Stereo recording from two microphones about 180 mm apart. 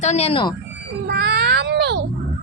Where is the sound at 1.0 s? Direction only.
60° right (ahead or behind).